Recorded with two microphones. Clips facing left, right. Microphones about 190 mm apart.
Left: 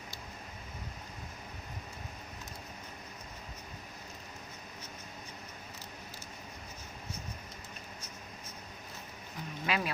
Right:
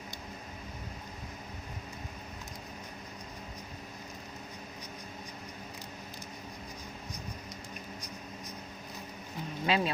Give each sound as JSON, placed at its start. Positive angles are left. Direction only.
{"t": 9.6, "sound": "speech", "side_deg": -25}